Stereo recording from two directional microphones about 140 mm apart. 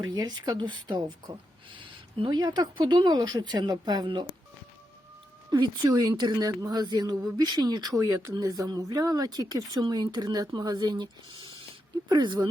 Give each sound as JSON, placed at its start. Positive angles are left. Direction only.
{"t": 0.0, "sound": "speech", "side_deg": -25}
{"t": 5.5, "sound": "speech", "side_deg": -30}